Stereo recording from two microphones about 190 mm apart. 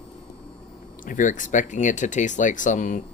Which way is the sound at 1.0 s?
45° left (ahead or behind).